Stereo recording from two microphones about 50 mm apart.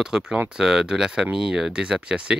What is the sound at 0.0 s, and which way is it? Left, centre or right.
Speech, centre.